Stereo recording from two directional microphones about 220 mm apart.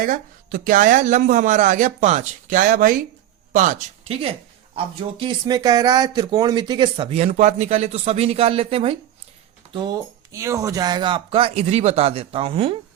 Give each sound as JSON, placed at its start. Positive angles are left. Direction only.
{"t": 0.0, "sound": "speech", "side_deg": -40}